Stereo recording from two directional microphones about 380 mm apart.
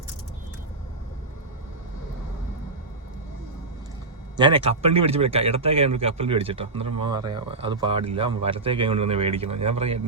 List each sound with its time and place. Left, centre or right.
4.4 s a man's voice: centre